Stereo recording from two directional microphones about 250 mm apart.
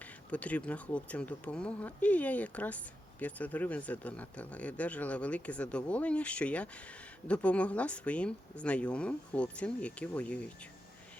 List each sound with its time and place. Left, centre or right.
0.3 s speech: centre